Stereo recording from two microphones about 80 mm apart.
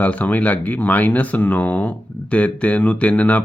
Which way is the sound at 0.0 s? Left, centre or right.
Left.